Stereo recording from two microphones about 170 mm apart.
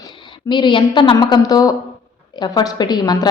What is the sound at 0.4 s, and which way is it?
A woman's voice, 25° left (ahead or behind).